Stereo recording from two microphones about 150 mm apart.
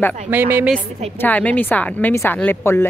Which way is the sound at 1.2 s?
10° left (ahead or behind).